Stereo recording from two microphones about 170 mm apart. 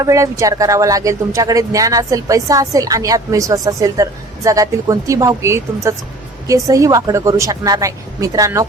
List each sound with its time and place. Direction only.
0.0 s speech: 20° right (ahead or behind)